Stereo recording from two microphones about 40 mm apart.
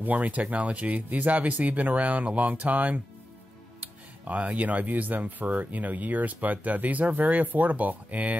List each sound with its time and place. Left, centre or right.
0.0 s speech: right